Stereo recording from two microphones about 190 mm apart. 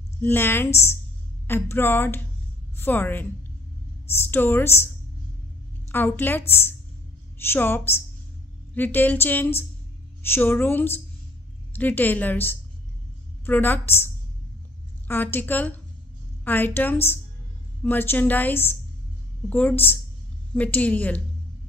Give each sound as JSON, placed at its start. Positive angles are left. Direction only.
{"t": 0.2, "sound": "a woman's voice", "side_deg": 10}